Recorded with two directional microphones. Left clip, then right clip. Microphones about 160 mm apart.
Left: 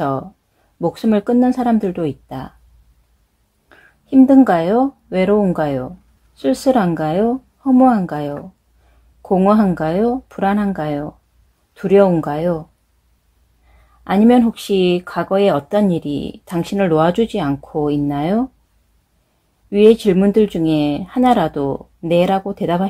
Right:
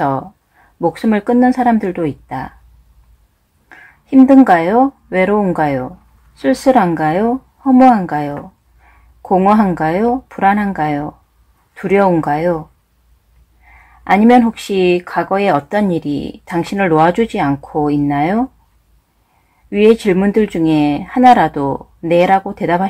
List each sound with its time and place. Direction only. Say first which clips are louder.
0.7 s speech: right 2 dB; 30° left (ahead or behind)
3.6 s speech: right 8 dB; 35° left (ahead or behind)
14.0 s speech: right 4 dB; 35° left (ahead or behind)
20.0 s speech: even; 35° left (ahead or behind)